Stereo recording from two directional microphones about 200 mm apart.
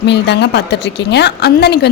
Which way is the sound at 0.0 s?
60° left (ahead or behind).